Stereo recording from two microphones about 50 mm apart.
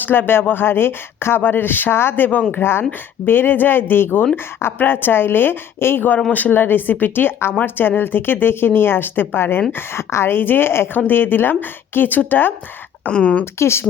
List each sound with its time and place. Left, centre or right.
0.0 s speech: left
6.3 s speech: left
9.7 s speech: left
10.3 s speech: left
13.1 s speech: left
13.4 s speech: left